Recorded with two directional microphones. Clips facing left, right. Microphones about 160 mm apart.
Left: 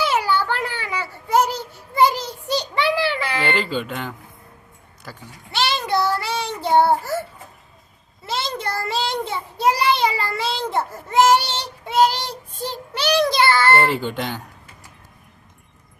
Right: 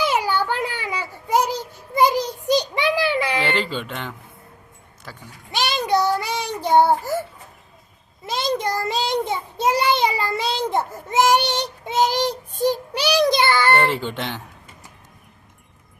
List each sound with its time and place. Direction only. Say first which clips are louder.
0.0 s a sound: left 1 dB; 15° right (ahead or behind)
0.4 s child singing: right 1 dB; 15° right (ahead or behind)
3.4 s speech: left 1 dB; centre (ahead or behind)
5.5 s a child's voice: right 1 dB; 15° right (ahead or behind)
8.3 s a child's voice: right 3 dB; 15° right (ahead or behind)
13.7 s speech: left 1 dB; centre (ahead or behind)